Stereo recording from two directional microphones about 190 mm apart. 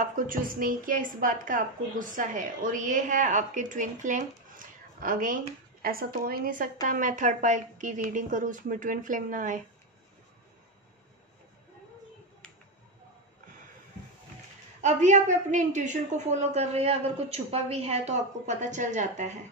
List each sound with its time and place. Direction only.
0.0 s a woman's voice: 45° right (ahead or behind)
14.8 s a woman's voice: 40° right (ahead or behind)